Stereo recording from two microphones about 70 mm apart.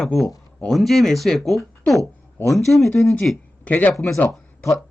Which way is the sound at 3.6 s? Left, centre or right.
Left.